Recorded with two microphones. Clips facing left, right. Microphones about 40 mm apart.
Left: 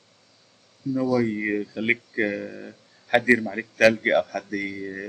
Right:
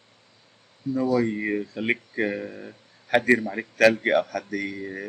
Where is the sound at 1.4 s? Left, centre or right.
Centre.